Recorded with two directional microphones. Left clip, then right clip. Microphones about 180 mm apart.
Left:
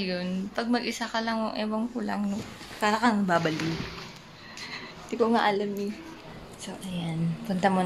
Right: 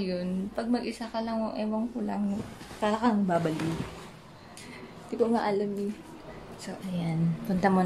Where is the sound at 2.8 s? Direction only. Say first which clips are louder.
Left 3 dB; 5° left (ahead or behind).